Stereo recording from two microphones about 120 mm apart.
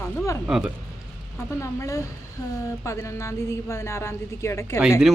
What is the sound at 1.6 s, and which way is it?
A woman's voice, 25° left (ahead or behind).